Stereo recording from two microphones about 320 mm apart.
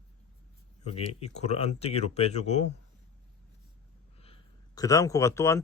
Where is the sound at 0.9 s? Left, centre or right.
Centre.